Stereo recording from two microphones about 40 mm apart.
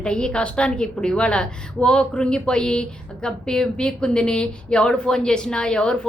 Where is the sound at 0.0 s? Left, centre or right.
Left.